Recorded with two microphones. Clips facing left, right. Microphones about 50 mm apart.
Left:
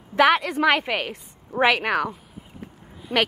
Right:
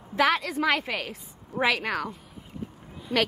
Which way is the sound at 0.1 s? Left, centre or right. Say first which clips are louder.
Left 5 dB; left.